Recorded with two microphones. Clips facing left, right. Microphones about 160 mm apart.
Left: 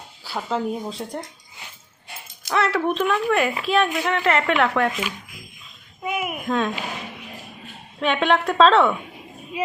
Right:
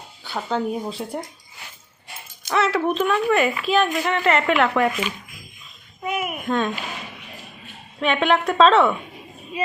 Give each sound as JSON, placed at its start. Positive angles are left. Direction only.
{"t": 0.3, "sound": "a woman's voice", "side_deg": 0}
{"t": 2.5, "sound": "a woman's voice", "side_deg": 0}
{"t": 6.0, "sound": "a child's voice", "side_deg": 10}
{"t": 6.5, "sound": "a woman's voice", "side_deg": 0}
{"t": 7.9, "sound": "a woman's voice", "side_deg": 0}